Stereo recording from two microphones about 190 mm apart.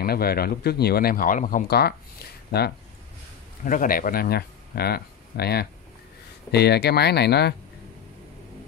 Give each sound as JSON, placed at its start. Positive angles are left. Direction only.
{"t": 0.0, "sound": "speech", "side_deg": 55}
{"t": 3.6, "sound": "speech", "side_deg": 45}